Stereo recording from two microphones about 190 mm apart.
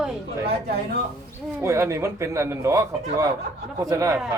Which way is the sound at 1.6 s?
15° right (ahead or behind).